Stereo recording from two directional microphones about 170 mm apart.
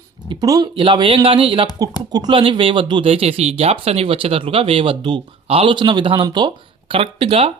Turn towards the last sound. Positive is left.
turn(degrees=-35)  # may be behind; listen again after turning